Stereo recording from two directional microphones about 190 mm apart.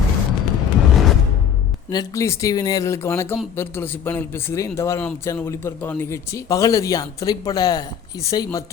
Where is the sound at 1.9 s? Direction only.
15° left (ahead or behind).